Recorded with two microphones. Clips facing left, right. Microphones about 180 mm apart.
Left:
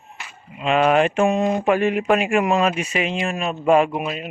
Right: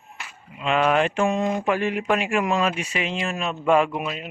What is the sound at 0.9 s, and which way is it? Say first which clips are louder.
Speech: left 4 dB; 15° left (ahead or behind).